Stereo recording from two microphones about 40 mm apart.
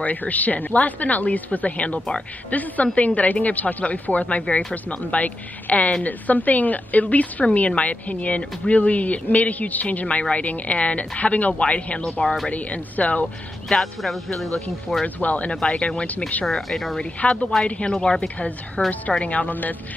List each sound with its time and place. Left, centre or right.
0.0 s a woman's voice: left
13.7 s speech: centre
15.1 s speech: left
16.6 s speech: centre
17.2 s speech: left
17.9 s speech: centre
18.9 s speech: left